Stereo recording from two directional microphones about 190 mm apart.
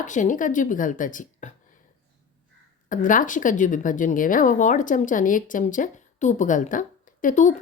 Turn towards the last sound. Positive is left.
turn(degrees=40)  # may be behind; listen again after turning